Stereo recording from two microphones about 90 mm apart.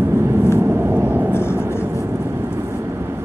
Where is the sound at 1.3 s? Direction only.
25° left (ahead or behind).